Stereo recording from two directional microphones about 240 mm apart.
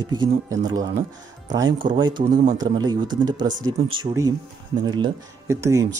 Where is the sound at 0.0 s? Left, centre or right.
Centre.